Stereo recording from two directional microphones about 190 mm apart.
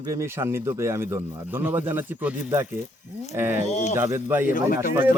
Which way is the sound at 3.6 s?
35° left (ahead or behind).